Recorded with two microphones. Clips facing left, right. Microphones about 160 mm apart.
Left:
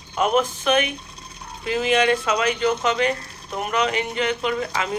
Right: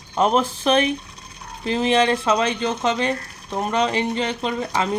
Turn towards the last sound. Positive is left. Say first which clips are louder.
# right 1 dB
turn(degrees=-30)  # may be behind; listen again after turning